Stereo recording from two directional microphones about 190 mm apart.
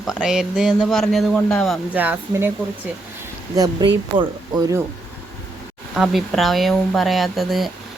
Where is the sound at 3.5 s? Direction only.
20° right (ahead or behind).